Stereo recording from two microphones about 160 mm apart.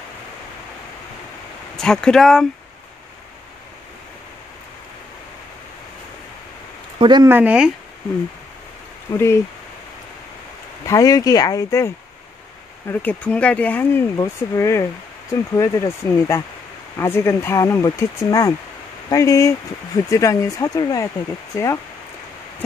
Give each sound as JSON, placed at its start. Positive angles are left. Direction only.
{"t": 1.8, "sound": "speech", "side_deg": 5}
{"t": 7.0, "sound": "speech", "side_deg": -25}
{"t": 7.2, "sound": "speech", "side_deg": -10}
{"t": 9.1, "sound": "speech", "side_deg": 15}
{"t": 10.9, "sound": "speech", "side_deg": 20}